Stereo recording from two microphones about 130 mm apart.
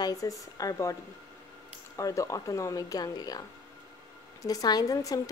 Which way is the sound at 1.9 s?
25° left (ahead or behind).